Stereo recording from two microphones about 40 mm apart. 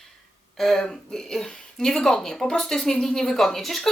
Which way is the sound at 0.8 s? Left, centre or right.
Centre.